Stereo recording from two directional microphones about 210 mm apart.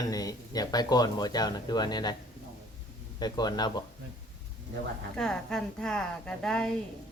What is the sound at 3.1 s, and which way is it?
Speech, 20° left (ahead or behind).